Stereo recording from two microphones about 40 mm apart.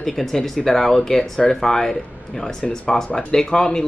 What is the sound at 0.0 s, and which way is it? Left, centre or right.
Speech, centre.